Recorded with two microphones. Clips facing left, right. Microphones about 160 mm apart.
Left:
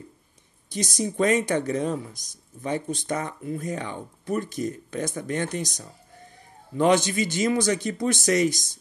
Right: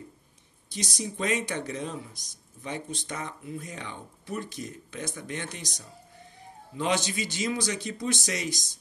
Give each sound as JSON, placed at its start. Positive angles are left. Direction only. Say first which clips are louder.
{"t": 0.7, "sound": "speech", "louder": "left 7 dB", "side_deg": 45}